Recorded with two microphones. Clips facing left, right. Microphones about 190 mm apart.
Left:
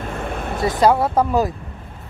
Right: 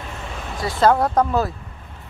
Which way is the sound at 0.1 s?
55° left (ahead or behind).